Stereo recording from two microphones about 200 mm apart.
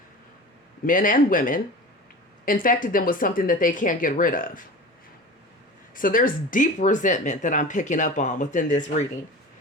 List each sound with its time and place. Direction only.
0.9 s a woman's voice: 40° left (ahead or behind)
5.9 s speech: 45° left (ahead or behind)